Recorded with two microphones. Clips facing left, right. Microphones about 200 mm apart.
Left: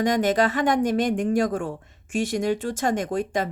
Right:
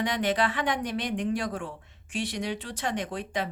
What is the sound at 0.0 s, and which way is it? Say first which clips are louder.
Speech: left 6 dB; 45° left (ahead or behind).